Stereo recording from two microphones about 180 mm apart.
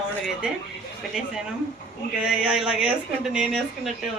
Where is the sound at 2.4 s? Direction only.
5° right (ahead or behind).